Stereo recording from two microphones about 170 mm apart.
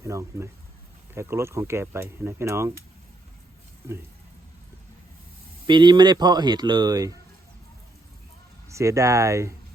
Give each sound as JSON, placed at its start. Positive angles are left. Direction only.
{"t": 0.0, "sound": "speech", "side_deg": -15}
{"t": 3.8, "sound": "speech", "side_deg": -15}
{"t": 5.6, "sound": "speech", "side_deg": -25}
{"t": 8.7, "sound": "speech", "side_deg": -15}